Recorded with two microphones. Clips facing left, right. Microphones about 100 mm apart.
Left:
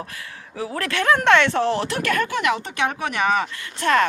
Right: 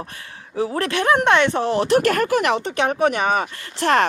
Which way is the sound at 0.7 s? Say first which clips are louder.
Right 1 dB; 20° right (ahead or behind).